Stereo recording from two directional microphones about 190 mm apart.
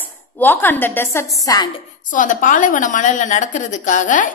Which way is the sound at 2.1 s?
45° left (ahead or behind).